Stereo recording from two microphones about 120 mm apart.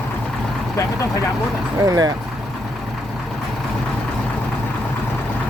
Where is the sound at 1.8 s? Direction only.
35° right (ahead or behind).